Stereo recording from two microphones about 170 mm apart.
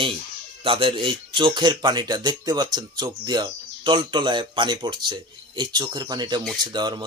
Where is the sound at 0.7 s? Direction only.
30° right (ahead or behind).